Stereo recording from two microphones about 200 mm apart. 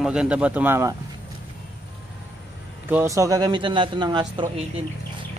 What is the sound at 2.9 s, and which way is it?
A man's voice, 15° right (ahead or behind).